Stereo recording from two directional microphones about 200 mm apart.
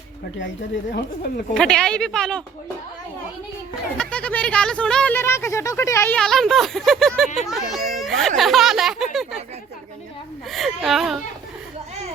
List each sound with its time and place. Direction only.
0.9 s speech: 50° left (ahead or behind)
1.5 s speech: 5° left (ahead or behind)
3.9 s speech: 5° left (ahead or behind)
6.1 s a child's voice: centre (ahead or behind)
10.5 s speech: centre (ahead or behind)